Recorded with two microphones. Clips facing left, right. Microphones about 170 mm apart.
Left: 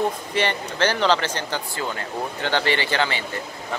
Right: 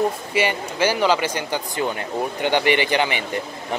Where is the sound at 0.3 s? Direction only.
10° right (ahead or behind).